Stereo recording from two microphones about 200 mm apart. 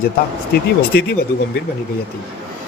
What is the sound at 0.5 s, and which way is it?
Speech, 50° left (ahead or behind).